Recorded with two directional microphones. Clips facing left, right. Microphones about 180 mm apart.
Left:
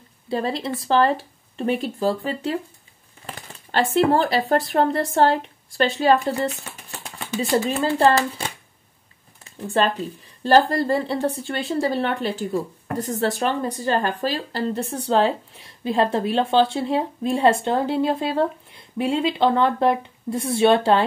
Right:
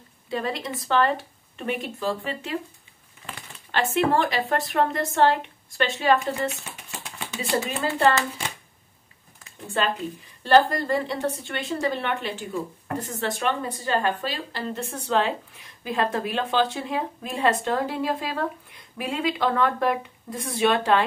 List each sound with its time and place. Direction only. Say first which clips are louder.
0.3 s a woman's voice: left 4 dB; 30° left (ahead or behind)
7.8 s a woman's voice: left 2 dB; 35° left (ahead or behind)
10.4 s a woman's voice: left 2 dB; 35° left (ahead or behind)